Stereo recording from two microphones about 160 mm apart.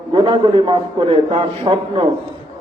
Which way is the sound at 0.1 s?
30° right (ahead or behind).